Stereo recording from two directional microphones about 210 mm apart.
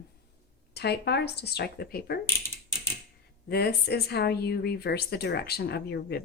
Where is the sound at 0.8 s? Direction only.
50° left (ahead or behind).